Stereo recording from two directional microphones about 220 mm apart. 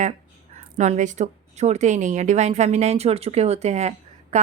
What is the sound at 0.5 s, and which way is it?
A woman's voice, 30° right (ahead or behind).